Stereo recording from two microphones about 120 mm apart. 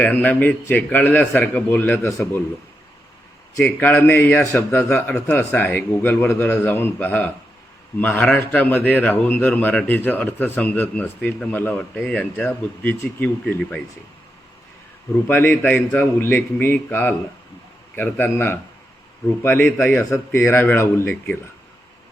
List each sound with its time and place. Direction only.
0.0 s a man's voice: 15° left (ahead or behind)
2.0 s a man's voice: 25° left (ahead or behind)
3.6 s a man's voice: 15° left (ahead or behind)
11.7 s a man's voice: 5° left (ahead or behind)
15.3 s a man's voice: 15° left (ahead or behind)